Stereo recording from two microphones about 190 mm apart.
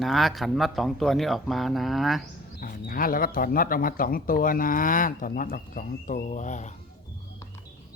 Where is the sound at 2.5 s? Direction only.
45° left (ahead or behind).